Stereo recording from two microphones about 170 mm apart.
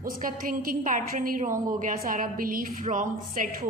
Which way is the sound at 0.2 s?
55° right (ahead or behind).